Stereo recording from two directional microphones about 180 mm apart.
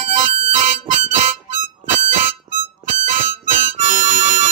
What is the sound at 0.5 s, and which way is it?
Harmonica, 45° right (ahead or behind).